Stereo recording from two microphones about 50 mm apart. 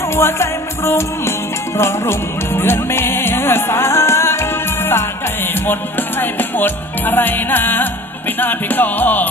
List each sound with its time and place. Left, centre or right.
0.1 s music: left